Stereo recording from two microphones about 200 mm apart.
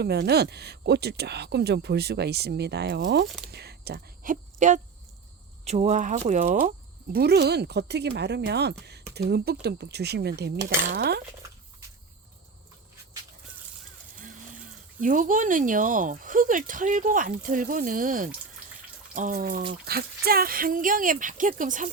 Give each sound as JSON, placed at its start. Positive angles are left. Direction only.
{"t": 0.0, "sound": "speech", "side_deg": -55}
{"t": 14.2, "sound": "a sound", "side_deg": -40}
{"t": 15.0, "sound": "speech", "side_deg": -40}